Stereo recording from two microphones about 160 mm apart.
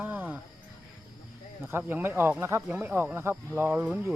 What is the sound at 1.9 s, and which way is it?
Speech, 15° right (ahead or behind).